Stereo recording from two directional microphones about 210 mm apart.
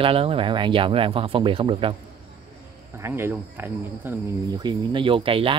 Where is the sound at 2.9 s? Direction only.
10° right (ahead or behind).